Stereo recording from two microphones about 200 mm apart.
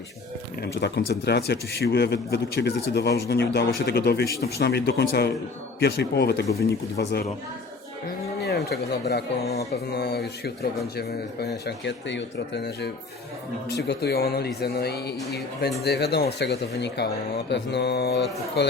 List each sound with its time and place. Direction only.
0.6 s speech: 55° left (ahead or behind)
8.4 s speech: 55° left (ahead or behind)